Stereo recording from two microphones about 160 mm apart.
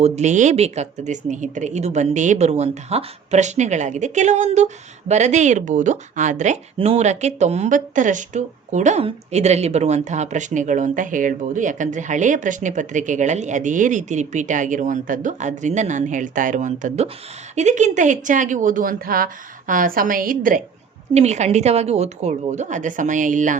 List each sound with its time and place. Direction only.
0.0 s speech: 45° right (ahead or behind)
6.7 s a woman's voice: 40° right (ahead or behind); by 20.6 s 60° right (ahead or behind)
21.1 s speech: 45° right (ahead or behind)